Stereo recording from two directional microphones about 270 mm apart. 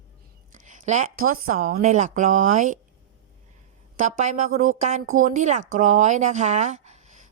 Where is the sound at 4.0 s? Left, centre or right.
Right.